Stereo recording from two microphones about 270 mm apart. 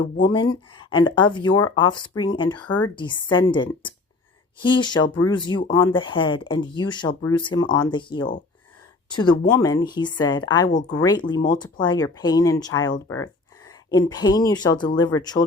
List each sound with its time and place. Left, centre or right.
0.3 s speech: centre
2.6 s speech: left
2.9 s speech: centre
10.7 s speech: left
11.0 s speech: centre